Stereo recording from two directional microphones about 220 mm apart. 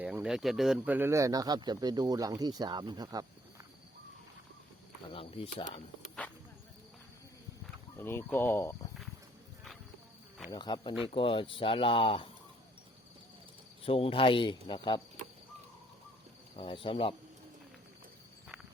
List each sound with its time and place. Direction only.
0.0 s speech: 5° right (ahead or behind)
5.1 s speech: 25° left (ahead or behind)
7.9 s speech: 10° left (ahead or behind)
10.5 s speech: 20° left (ahead or behind)
13.8 s speech: 25° left (ahead or behind)
16.6 s speech: 25° left (ahead or behind)